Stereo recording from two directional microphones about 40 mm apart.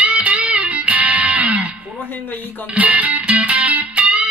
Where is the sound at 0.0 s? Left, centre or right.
Right.